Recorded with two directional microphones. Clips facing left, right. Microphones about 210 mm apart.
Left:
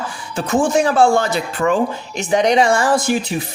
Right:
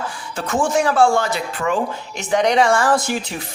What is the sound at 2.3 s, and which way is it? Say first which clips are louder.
Speech: left 1 dB; 20° left (ahead or behind).